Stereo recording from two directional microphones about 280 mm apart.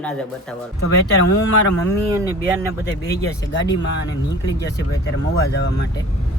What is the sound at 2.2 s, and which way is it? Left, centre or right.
Speech, centre.